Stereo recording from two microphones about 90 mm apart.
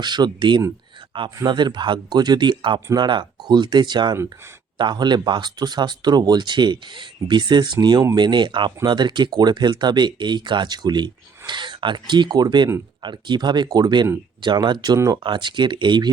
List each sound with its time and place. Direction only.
0.0 s speech: 55° right (ahead or behind)
1.1 s speech: 75° right (ahead or behind)
1.5 s speech: 55° right (ahead or behind)
14.9 s speech: 35° right (ahead or behind)
15.2 s speech: 60° right (ahead or behind)